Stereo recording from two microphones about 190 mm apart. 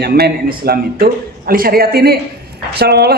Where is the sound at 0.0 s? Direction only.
55° right (ahead or behind).